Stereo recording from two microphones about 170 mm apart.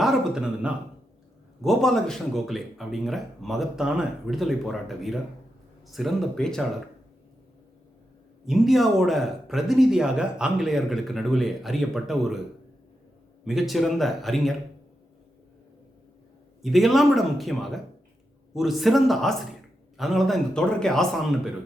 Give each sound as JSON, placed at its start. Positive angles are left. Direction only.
{"t": 0.0, "sound": "a sound", "side_deg": -5}
{"t": 1.6, "sound": "speech", "side_deg": 0}
{"t": 8.4, "sound": "speech", "side_deg": 0}
{"t": 13.4, "sound": "speech", "side_deg": 0}
{"t": 16.6, "sound": "speech", "side_deg": 0}